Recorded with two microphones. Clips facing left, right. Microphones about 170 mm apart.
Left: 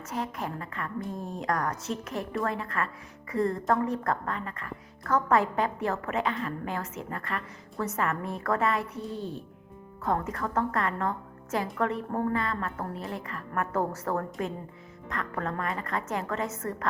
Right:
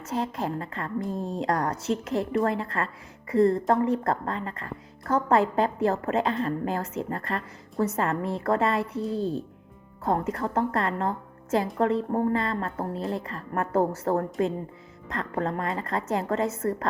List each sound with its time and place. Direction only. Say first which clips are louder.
0.0 s a woman's voice: right 4 dB; 30° right (ahead or behind)